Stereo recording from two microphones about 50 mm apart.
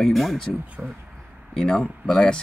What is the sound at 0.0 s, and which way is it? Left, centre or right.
Speech, centre.